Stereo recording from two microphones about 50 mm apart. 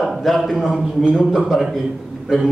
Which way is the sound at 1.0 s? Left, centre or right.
Centre.